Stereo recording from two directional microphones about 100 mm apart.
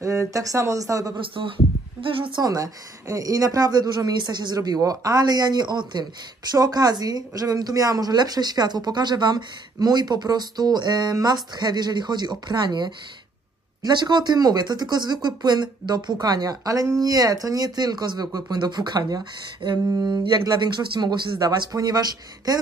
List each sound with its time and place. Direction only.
0.0 s speech: 30° right (ahead or behind)
1.1 s a woman's voice: 60° right (ahead or behind)
2.4 s speech: 35° right (ahead or behind)